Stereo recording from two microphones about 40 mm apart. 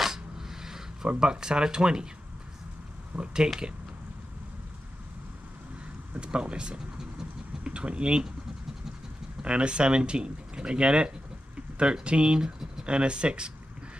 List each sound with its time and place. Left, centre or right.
0.0 s a sound: centre
1.0 s speech: right
3.1 s speech: centre
6.2 s speech: right
9.4 s speech: right